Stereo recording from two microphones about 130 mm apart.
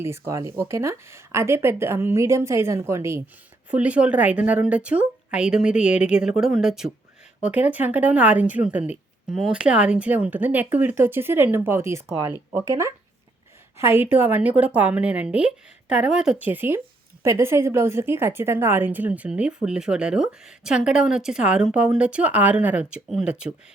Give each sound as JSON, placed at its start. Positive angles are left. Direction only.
{"t": 0.0, "sound": "speech", "side_deg": -20}
{"t": 3.7, "sound": "a woman's voice", "side_deg": -10}